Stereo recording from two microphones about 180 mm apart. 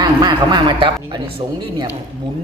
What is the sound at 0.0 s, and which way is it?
A man's voice, 25° right (ahead or behind).